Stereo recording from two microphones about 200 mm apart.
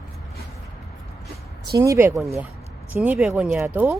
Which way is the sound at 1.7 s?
15° right (ahead or behind).